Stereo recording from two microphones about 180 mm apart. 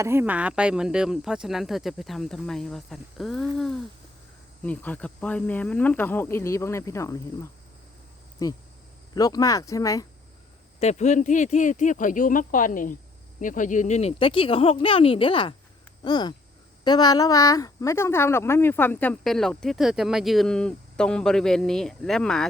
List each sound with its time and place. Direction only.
0.0 s a woman's voice: 15° right (ahead or behind); by 7.2 s 15° left (ahead or behind)
8.4 s speech: 20° left (ahead or behind)
10.8 s a woman's voice: 40° left (ahead or behind); by 22.4 s 5° left (ahead or behind)